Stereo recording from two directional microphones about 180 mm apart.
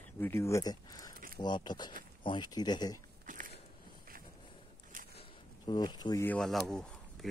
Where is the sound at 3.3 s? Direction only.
45° right (ahead or behind).